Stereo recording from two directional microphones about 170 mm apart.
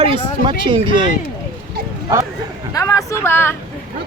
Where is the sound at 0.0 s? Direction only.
30° right (ahead or behind).